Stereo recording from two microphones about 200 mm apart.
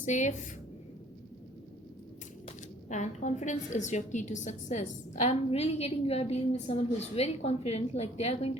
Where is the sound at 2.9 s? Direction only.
35° left (ahead or behind).